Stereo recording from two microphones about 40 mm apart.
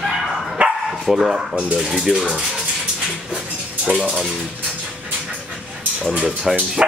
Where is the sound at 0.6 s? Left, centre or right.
Right.